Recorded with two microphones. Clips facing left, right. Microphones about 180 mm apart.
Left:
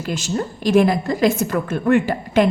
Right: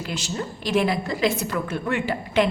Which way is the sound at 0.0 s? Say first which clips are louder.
Left 6 dB; 45° left (ahead or behind).